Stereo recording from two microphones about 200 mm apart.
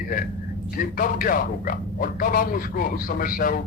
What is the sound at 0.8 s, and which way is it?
Speech, 45° left (ahead or behind).